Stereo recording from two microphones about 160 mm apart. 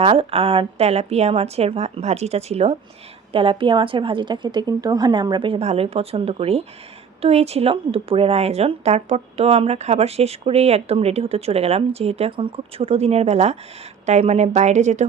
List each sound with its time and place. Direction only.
0.0 s a woman's voice: 35° right (ahead or behind)